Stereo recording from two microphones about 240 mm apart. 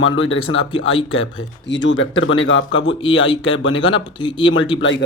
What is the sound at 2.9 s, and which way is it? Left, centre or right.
Speech, left.